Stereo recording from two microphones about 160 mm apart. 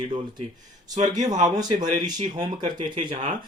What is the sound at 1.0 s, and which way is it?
Speech, 50° right (ahead or behind).